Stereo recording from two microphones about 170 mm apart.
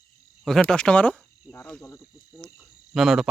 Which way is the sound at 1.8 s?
15° left (ahead or behind).